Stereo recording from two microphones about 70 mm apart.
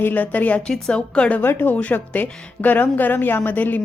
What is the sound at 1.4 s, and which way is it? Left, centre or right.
A woman's voice, left.